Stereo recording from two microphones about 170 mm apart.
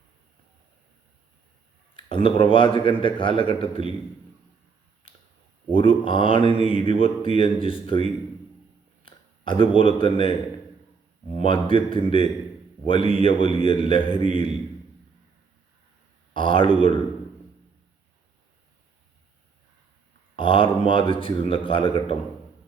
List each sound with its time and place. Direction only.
2.0 s speech: 30° left (ahead or behind)
5.7 s speech: 30° left (ahead or behind)
16.3 s speech: 30° left (ahead or behind)
20.3 s speech: 30° left (ahead or behind)